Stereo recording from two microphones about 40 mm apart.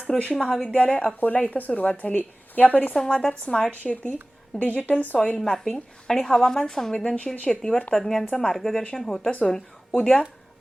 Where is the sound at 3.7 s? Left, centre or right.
Left.